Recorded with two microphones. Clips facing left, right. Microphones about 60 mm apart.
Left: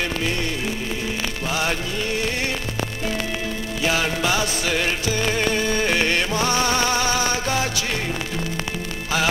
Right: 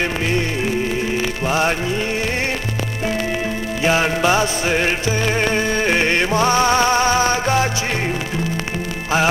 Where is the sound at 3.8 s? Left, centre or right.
Right.